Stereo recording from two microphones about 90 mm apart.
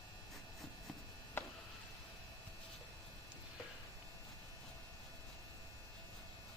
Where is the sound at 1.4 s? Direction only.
25° left (ahead or behind).